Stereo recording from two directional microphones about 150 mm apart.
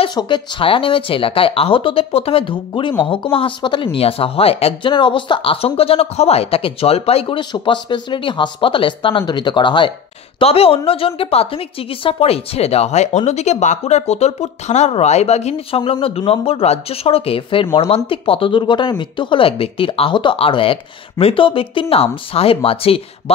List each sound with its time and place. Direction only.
0.0 s a woman's voice: 30° left (ahead or behind)